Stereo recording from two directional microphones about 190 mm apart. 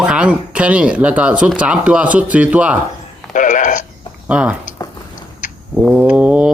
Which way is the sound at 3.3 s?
45° left (ahead or behind).